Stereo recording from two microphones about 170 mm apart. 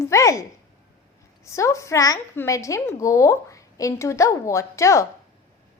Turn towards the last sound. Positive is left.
turn(degrees=15)  # may be behind; listen again after turning